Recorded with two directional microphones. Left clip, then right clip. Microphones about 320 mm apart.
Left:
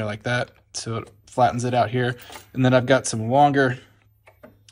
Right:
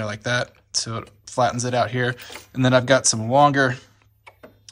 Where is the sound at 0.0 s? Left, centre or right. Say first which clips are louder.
Right 1 dB; centre.